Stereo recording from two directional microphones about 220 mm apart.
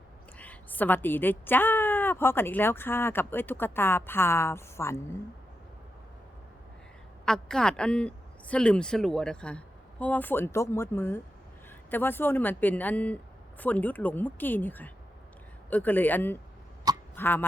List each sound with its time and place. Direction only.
0.3 s a woman's voice: 5° left (ahead or behind)
7.3 s a woman's voice: 5° left (ahead or behind)